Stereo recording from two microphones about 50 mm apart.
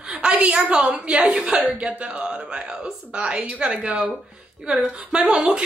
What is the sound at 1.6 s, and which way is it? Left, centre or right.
Speech, right.